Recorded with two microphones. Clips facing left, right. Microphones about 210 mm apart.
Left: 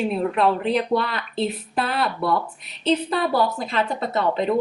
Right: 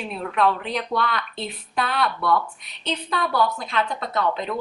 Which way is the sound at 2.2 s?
30° left (ahead or behind).